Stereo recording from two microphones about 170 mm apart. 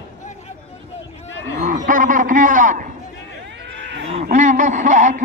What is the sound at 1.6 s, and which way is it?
A man's voice, 50° right (ahead or behind).